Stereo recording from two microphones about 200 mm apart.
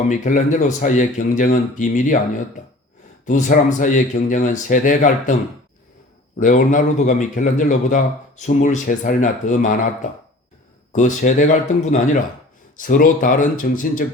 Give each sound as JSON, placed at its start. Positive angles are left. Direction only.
{"t": 0.1, "sound": "a man's voice", "side_deg": 40}
{"t": 6.4, "sound": "a man's voice", "side_deg": 40}
{"t": 10.9, "sound": "a man's voice", "side_deg": 40}